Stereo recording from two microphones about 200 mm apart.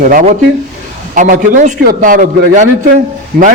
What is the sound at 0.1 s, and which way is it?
A man's voice, 40° right (ahead or behind).